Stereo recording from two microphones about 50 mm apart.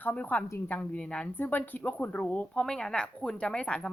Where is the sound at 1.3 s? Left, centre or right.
Left.